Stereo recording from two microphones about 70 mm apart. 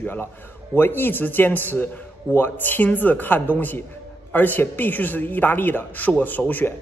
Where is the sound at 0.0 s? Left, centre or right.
Left.